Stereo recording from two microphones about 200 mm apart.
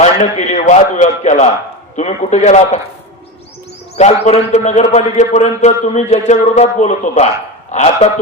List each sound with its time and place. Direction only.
0.0 s a man's voice: 35° left (ahead or behind)
3.9 s a man's voice: 35° left (ahead or behind)